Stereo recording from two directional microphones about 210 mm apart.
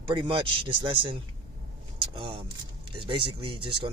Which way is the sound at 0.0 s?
25° right (ahead or behind).